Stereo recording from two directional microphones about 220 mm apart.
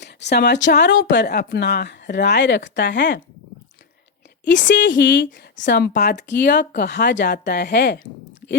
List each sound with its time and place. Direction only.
0.0 s speech: 50° left (ahead or behind)
4.4 s speech: 55° left (ahead or behind)